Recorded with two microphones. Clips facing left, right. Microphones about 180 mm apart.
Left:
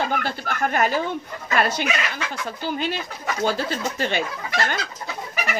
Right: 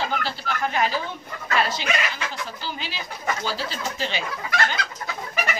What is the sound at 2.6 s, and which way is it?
Speech, 55° left (ahead or behind).